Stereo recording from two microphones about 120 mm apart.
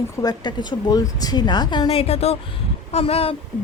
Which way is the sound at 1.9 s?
55° left (ahead or behind).